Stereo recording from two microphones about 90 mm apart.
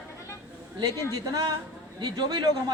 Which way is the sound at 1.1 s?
35° right (ahead or behind).